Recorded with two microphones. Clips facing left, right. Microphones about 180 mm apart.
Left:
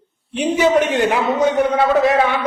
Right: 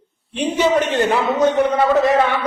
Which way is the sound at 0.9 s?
15° left (ahead or behind).